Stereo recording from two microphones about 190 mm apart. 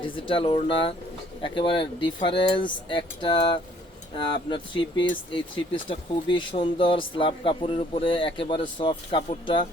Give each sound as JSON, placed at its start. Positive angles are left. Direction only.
{"t": 0.0, "sound": "speech", "side_deg": 25}